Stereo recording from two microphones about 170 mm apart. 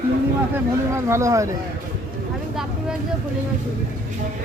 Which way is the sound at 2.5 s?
Centre (ahead or behind).